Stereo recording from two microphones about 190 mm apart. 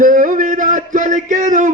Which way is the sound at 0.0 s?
45° right (ahead or behind).